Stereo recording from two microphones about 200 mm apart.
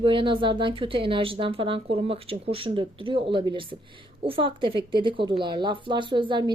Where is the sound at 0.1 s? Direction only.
25° right (ahead or behind).